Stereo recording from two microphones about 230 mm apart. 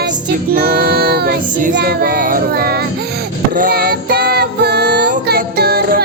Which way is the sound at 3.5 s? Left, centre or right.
Right.